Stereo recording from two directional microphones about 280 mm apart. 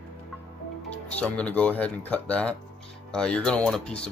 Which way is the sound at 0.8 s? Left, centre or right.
Centre.